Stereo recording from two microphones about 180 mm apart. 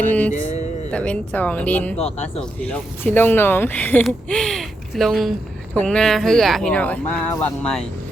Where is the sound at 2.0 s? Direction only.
35° left (ahead or behind).